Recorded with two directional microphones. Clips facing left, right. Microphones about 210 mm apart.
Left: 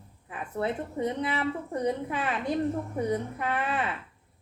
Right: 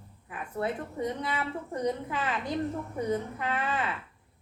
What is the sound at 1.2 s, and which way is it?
Speech, 25° left (ahead or behind).